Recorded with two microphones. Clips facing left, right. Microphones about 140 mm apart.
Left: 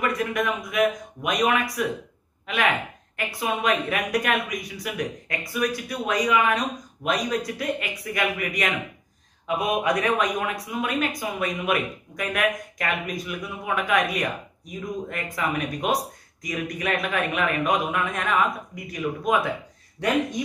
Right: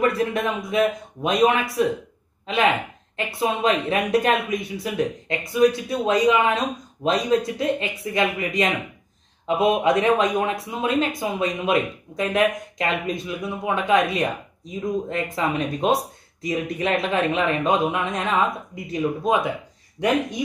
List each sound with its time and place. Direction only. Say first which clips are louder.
0.0 s speech: right 4 dB; 30° right (ahead or behind)